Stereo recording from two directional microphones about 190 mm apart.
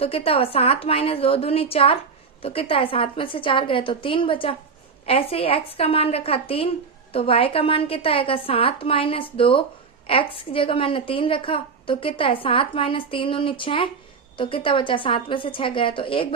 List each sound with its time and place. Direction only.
0.0 s a woman's voice: 30° left (ahead or behind)